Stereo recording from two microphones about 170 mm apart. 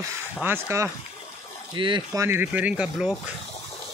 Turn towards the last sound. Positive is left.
turn(degrees=-5)  # may be behind; listen again after turning